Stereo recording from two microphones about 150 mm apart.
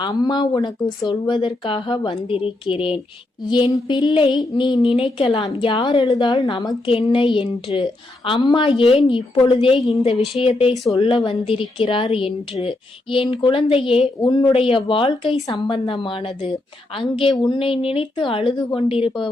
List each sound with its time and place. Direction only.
0.0 s a woman's voice: 30° left (ahead or behind)
3.5 s a woman's voice: 25° left (ahead or behind)
6.4 s speech: 25° left (ahead or behind)
6.8 s a woman's voice: 35° left (ahead or behind)